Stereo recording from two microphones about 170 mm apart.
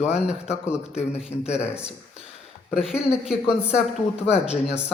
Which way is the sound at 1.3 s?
40° left (ahead or behind).